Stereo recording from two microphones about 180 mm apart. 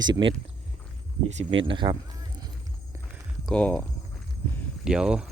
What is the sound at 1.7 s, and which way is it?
Speech, 25° right (ahead or behind).